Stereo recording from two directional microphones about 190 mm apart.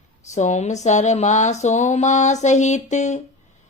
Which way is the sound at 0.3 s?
40° left (ahead or behind).